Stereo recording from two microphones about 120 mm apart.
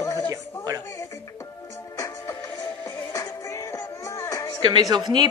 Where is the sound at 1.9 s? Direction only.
25° left (ahead or behind).